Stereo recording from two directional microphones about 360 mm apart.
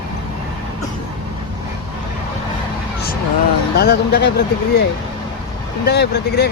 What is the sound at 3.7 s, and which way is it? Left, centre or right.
Speech, left.